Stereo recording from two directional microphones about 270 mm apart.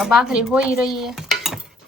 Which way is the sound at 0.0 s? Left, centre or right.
Centre.